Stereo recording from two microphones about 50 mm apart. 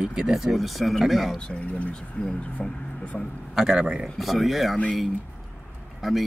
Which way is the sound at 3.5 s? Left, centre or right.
Centre.